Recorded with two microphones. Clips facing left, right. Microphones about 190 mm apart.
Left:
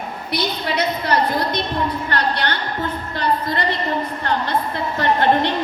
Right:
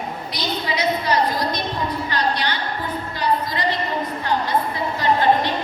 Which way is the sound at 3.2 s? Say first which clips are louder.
Left 1 dB; 60° left (ahead or behind).